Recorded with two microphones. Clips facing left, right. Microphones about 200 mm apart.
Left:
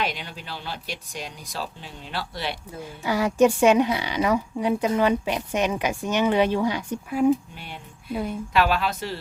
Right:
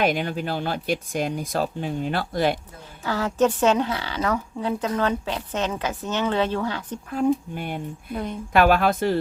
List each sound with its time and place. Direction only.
0.0 s speech: 50° right (ahead or behind)
3.0 s speech: 15° left (ahead or behind)
7.5 s speech: 50° right (ahead or behind)
8.1 s speech: 5° left (ahead or behind)
8.5 s speech: 55° right (ahead or behind)